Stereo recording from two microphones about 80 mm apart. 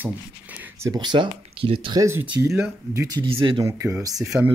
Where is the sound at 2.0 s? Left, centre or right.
Right.